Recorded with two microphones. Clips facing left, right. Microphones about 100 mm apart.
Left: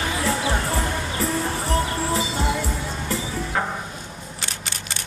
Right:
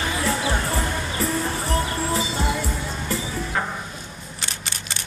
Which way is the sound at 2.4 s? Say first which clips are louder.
Left 1 dB; 50° left (ahead or behind).